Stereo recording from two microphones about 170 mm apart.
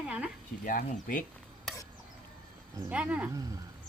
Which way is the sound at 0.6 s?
55° left (ahead or behind).